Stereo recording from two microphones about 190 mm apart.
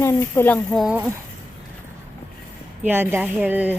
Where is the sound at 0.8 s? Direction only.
5° right (ahead or behind).